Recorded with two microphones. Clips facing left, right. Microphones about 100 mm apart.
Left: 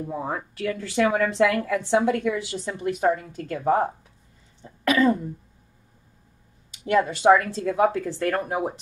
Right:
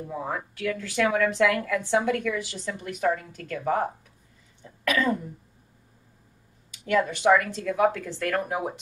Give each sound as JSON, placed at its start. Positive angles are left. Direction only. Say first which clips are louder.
{"t": 0.1, "sound": "a woman's voice", "louder": "left 2 dB", "side_deg": 25}
{"t": 6.9, "sound": "a woman's voice", "louder": "left 3 dB", "side_deg": 30}